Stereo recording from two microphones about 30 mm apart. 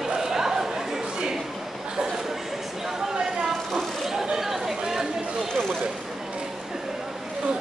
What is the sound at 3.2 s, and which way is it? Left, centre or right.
Snake, right.